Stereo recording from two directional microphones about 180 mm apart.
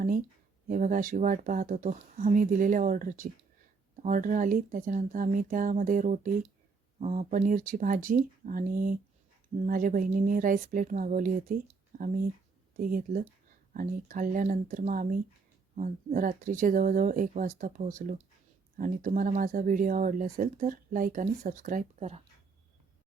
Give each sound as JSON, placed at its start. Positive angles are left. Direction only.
{"t": 0.7, "sound": "speech", "side_deg": -45}